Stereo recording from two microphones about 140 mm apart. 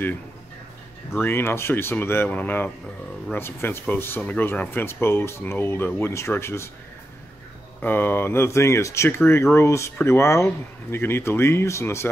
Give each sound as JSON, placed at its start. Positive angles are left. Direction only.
{"t": 1.2, "sound": "speech", "side_deg": 15}
{"t": 7.8, "sound": "speech", "side_deg": 15}